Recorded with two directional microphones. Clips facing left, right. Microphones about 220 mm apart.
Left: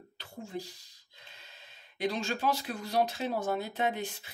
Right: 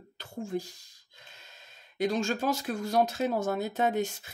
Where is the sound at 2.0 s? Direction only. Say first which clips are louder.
Right 4 dB; 45° right (ahead or behind).